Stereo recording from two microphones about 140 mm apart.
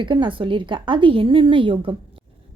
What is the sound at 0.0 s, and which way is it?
A woman's voice, 35° right (ahead or behind).